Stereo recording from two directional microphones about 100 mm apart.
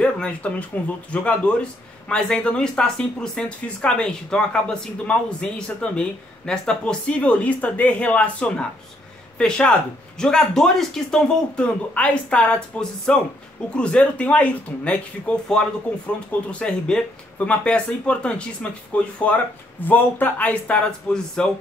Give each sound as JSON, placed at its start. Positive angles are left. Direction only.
{"t": 0.0, "sound": "speech", "side_deg": 15}